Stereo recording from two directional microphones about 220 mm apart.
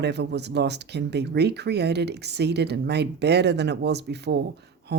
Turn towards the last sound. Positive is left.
turn(degrees=-50)  # may be behind; listen again after turning